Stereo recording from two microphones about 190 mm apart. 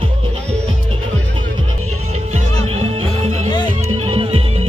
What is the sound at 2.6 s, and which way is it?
Music, 30° right (ahead or behind).